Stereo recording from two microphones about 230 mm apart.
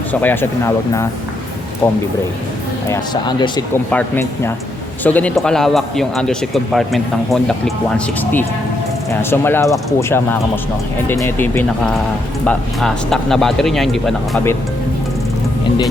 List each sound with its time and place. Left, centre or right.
0.1 s speech: centre
2.9 s a man's voice: centre